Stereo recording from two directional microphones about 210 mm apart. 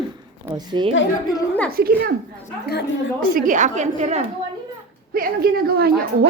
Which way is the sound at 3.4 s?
40° right (ahead or behind).